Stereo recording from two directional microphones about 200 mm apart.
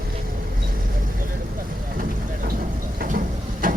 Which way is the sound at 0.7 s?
45° right (ahead or behind).